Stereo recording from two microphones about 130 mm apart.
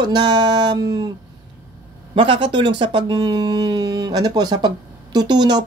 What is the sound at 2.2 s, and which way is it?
Speech, 40° right (ahead or behind).